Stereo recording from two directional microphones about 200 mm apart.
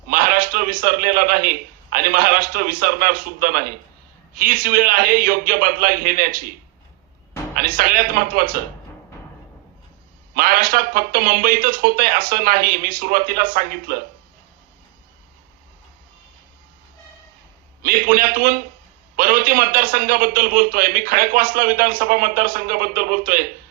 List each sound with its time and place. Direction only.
0.1 s a man's voice: 45° right (ahead or behind)
7.5 s a man's voice: 45° right (ahead or behind)
10.3 s a man's voice: 45° right (ahead or behind)
17.8 s a man's voice: 45° right (ahead or behind)